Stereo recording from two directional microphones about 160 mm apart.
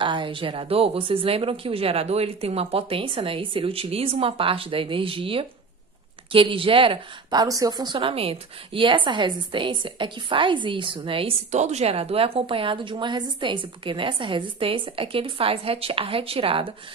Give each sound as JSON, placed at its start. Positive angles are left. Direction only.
{"t": 0.0, "sound": "speech", "side_deg": -30}